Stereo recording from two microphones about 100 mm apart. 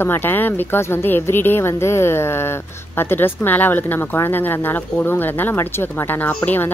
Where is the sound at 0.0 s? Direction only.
20° left (ahead or behind).